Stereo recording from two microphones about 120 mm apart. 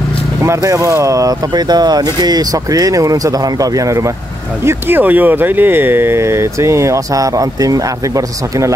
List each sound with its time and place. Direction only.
0.4 s speech: 25° right (ahead or behind)
4.6 s speech: 15° right (ahead or behind)